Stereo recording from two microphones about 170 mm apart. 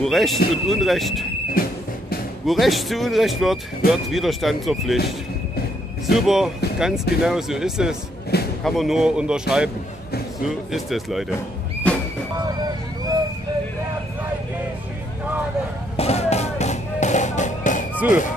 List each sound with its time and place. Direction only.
0.0 s speech: centre (ahead or behind)
1.5 s music: 60° left (ahead or behind)
2.4 s speech: centre (ahead or behind)
6.1 s speech: centre (ahead or behind)
8.3 s music: 70° left (ahead or behind)
8.6 s speech: centre (ahead or behind)
11.9 s a sound: 5° left (ahead or behind)
12.4 s vehicle: 25° right (ahead or behind)
16.0 s music: 40° left (ahead or behind)
17.9 s speech: 10° right (ahead or behind)